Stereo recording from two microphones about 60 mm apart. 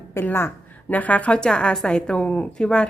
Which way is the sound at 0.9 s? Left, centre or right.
Left.